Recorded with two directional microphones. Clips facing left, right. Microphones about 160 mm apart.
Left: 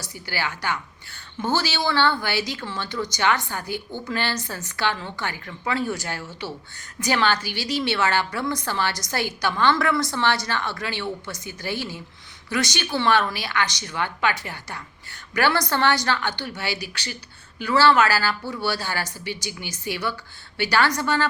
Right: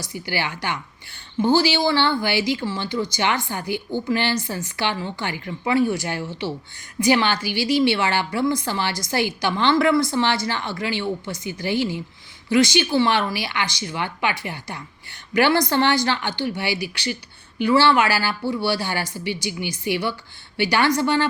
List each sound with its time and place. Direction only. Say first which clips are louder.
0.0 s a woman's voice: right 3 dB; 15° right (ahead or behind)